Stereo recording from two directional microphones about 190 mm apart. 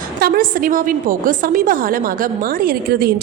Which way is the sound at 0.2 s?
50° right (ahead or behind).